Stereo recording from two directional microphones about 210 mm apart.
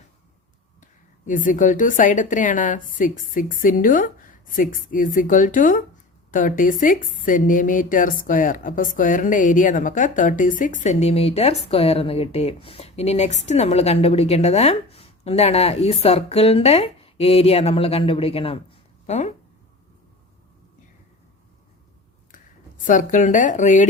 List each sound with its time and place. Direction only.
1.3 s a woman's voice: 40° left (ahead or behind)
22.8 s a woman's voice: 40° left (ahead or behind)